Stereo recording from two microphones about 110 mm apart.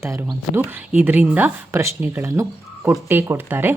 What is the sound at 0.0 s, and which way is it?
Speech, 25° right (ahead or behind).